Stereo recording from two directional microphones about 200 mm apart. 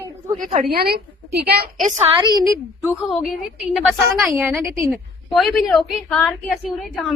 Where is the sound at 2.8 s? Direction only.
Centre (ahead or behind).